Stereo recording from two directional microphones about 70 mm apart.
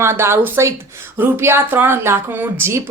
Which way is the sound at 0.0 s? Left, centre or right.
Right.